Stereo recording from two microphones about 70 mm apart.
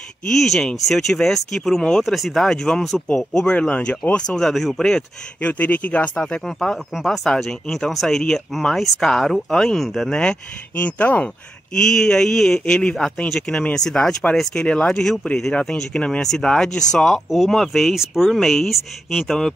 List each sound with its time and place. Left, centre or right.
0.3 s speech: centre
4.4 s speech: centre
5.4 s speech: left
6.2 s speech: centre
10.8 s speech: left
11.7 s speech: centre